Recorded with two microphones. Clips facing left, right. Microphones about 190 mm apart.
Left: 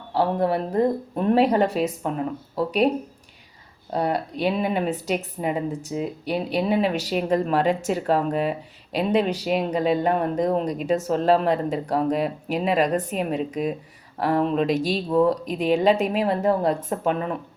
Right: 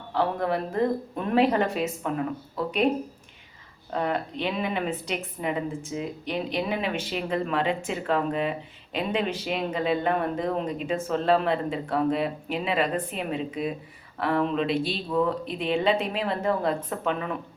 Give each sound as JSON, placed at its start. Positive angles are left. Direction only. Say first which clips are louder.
{"t": 0.1, "sound": "speech", "louder": "left 4 dB", "side_deg": 35}
{"t": 3.9, "sound": "speech", "louder": "left 3 dB", "side_deg": 35}